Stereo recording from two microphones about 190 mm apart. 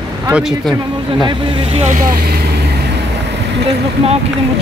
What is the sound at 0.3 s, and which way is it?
Speech, centre (ahead or behind).